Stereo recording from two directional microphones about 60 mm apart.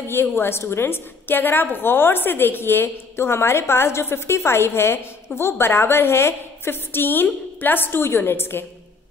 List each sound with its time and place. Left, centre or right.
0.1 s a woman's voice: left